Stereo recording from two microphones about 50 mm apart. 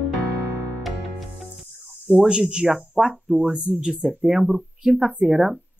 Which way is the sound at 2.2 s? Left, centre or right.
Centre.